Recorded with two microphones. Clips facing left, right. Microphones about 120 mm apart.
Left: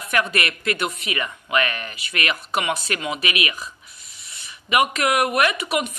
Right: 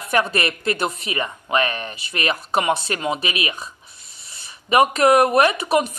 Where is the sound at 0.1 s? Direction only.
30° right (ahead or behind).